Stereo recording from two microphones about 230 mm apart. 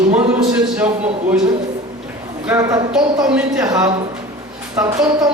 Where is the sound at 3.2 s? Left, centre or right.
Centre.